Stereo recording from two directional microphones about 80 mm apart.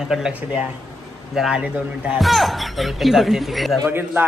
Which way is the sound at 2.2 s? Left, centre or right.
Centre.